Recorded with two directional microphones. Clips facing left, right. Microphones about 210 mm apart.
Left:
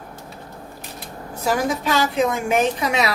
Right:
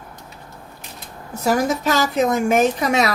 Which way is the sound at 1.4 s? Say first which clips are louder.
Right 3 dB; 45° right (ahead or behind).